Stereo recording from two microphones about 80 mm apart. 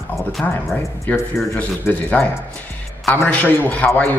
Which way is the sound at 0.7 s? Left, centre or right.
Left.